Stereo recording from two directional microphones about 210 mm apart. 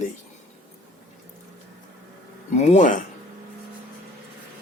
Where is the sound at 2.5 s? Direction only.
35° left (ahead or behind).